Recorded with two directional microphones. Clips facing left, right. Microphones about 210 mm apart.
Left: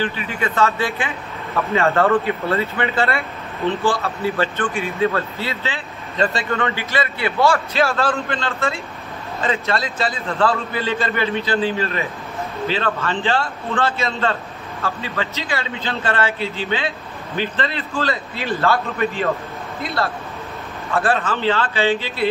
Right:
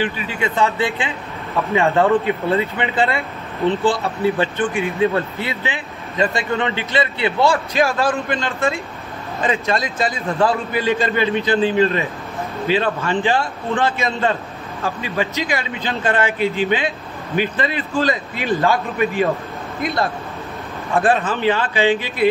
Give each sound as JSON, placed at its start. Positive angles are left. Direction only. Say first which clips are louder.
{"t": 0.4, "sound": "speech", "louder": "right 1 dB", "side_deg": -20}
{"t": 20.9, "sound": "speech", "louder": "right 3 dB", "side_deg": -20}